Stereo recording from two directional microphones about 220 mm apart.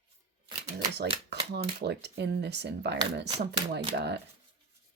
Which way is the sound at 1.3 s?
50° right (ahead or behind).